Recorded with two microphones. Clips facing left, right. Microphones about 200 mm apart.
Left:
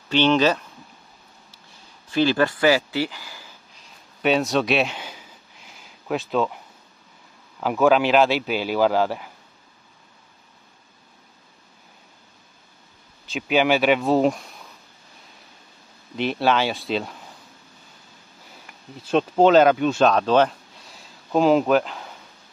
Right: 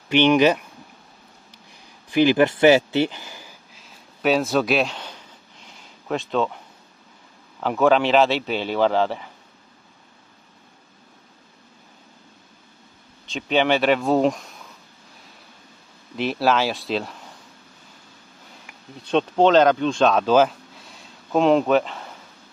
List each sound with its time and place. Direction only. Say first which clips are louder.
0.1 s speech: right 2 dB; 15° right (ahead or behind)
1.5 s a sound: right 2 dB; 15° right (ahead or behind)
3.7 s a sound: right 2 dB; centre (ahead or behind)
7.6 s speech: even; 5° left (ahead or behind)
13.3 s speech: even; 5° left (ahead or behind)
16.2 s speech: even; centre (ahead or behind)
19.0 s speech: left 1 dB; 5° left (ahead or behind)